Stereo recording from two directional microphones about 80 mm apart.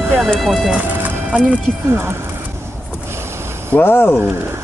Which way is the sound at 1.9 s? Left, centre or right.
Right.